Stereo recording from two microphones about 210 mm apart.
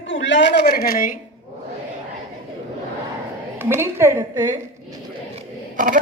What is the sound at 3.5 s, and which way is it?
A woman's voice, 10° right (ahead or behind).